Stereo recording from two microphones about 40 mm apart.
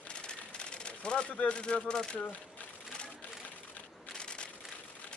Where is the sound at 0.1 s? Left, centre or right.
Left.